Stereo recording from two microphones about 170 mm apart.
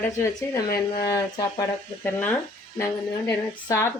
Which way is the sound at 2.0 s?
10° left (ahead or behind).